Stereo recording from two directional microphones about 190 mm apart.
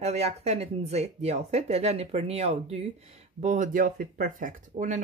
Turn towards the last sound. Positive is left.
turn(degrees=-40)  # may be behind; listen again after turning